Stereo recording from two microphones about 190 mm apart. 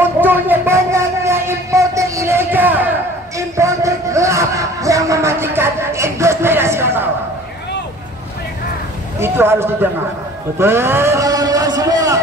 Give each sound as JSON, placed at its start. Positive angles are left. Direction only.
{"t": 0.2, "sound": "a sound", "side_deg": -10}
{"t": 3.3, "sound": "music", "side_deg": -15}
{"t": 9.2, "sound": "a man's voice", "side_deg": -10}